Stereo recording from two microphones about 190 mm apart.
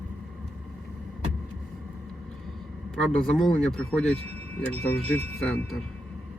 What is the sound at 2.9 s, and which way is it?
Speech, centre (ahead or behind).